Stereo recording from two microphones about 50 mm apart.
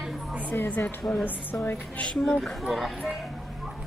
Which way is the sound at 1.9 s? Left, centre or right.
Left.